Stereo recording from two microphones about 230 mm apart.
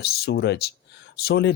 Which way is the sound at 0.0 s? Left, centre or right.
Left.